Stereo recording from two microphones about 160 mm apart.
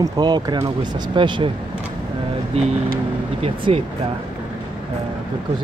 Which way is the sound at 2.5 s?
40° right (ahead or behind).